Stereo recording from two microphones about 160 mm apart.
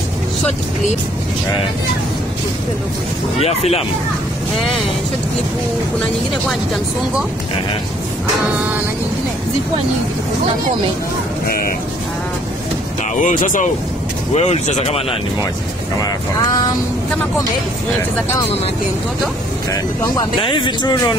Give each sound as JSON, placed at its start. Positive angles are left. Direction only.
{"t": 3.3, "sound": "speech", "side_deg": 40}
{"t": 11.4, "sound": "speech", "side_deg": 70}
{"t": 13.1, "sound": "speech", "side_deg": 55}
{"t": 14.3, "sound": "speech", "side_deg": 45}
{"t": 20.3, "sound": "speech", "side_deg": 30}